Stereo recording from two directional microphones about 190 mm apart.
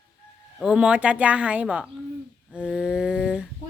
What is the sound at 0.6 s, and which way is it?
A woman's voice, 5° right (ahead or behind).